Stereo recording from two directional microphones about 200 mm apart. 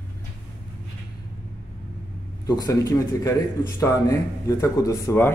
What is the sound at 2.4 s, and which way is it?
A man's voice, 20° left (ahead or behind).